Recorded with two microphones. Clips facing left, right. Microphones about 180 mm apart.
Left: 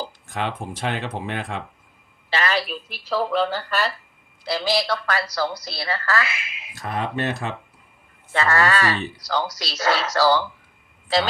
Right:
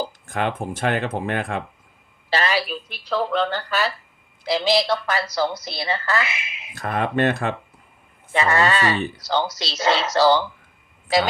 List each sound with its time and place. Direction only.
0.0 s speech: 50° right (ahead or behind)
2.5 s speech: centre (ahead or behind)
4.4 s speech: 20° right (ahead or behind)
6.7 s speech: 55° right (ahead or behind)
8.3 s speech: 20° right (ahead or behind)